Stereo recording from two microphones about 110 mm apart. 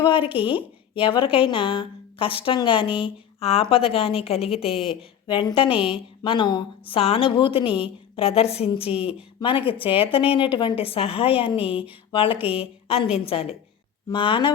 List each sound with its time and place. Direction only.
0.0 s a woman's voice: 55° left (ahead or behind)
5.3 s a woman's voice: 50° left (ahead or behind)
6.9 s a woman's voice: 60° left (ahead or behind)
8.1 s a woman's voice: 65° left (ahead or behind)
12.4 s speech: 10° right (ahead or behind)
13.1 s a woman's voice: 60° left (ahead or behind)
14.1 s a woman's voice: 50° left (ahead or behind)